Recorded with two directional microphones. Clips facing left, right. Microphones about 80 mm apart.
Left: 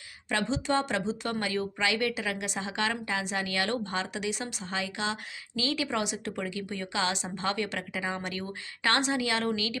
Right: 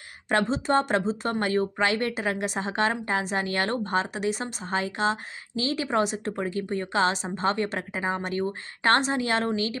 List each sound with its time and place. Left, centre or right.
0.3 s speech: right